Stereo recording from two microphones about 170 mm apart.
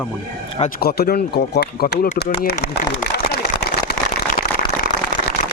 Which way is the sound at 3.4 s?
80° left.